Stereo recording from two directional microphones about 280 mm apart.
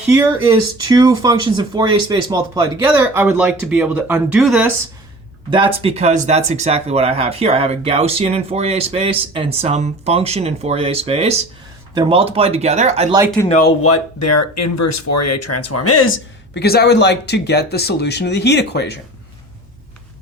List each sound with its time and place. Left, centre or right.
0.1 s speech: centre
5.5 s speech: centre
13.5 s speech: left
13.8 s speech: left